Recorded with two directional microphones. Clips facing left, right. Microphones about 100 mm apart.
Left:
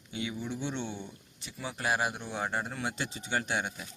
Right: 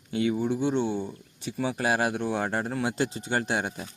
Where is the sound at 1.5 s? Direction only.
75° right (ahead or behind).